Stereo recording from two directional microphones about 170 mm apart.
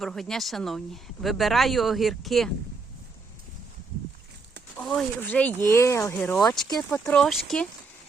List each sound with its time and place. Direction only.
0.0 s speech: 5° left (ahead or behind)
4.8 s speech: 5° left (ahead or behind)
6.3 s speech: 5° left (ahead or behind)
6.9 s speech: 15° left (ahead or behind)
7.2 s speech: centre (ahead or behind)